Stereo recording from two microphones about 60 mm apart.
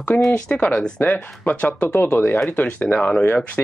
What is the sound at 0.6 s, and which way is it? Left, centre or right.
Speech, centre.